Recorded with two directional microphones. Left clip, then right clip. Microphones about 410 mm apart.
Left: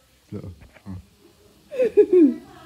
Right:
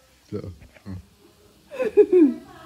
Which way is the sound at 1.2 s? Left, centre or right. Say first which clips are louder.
Even; centre.